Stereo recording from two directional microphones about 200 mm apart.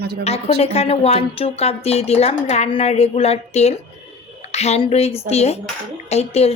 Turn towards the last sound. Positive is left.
turn(degrees=30)  # may be behind; listen again after turning